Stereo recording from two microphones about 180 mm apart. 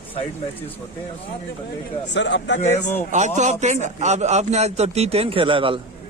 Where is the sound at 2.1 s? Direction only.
80° left.